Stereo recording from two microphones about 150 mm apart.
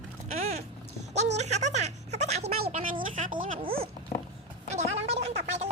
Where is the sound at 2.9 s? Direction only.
65° right (ahead or behind).